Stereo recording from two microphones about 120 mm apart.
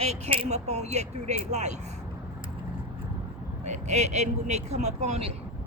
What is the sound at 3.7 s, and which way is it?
Speech, 70° right (ahead or behind).